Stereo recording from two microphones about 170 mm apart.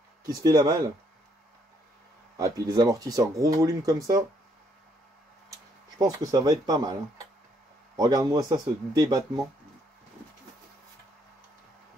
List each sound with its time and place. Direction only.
0.3 s speech: 20° right (ahead or behind)
2.3 s speech: 20° right (ahead or behind)
5.9 s speech: 20° right (ahead or behind)